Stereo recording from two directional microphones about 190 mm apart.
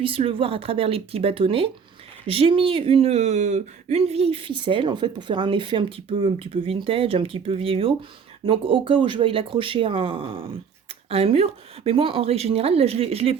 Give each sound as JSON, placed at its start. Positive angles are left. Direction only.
{"t": 0.0, "sound": "speech", "side_deg": -30}